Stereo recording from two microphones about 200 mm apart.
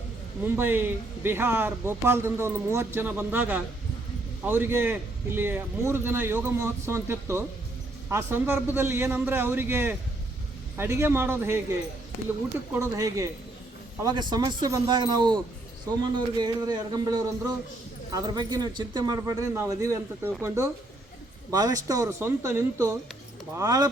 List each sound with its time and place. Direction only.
0.4 s speech: 10° right (ahead or behind)
12.7 s speech: 15° right (ahead or behind)
16.4 s speech: 20° right (ahead or behind)